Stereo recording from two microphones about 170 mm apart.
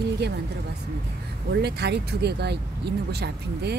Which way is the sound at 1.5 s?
80° right.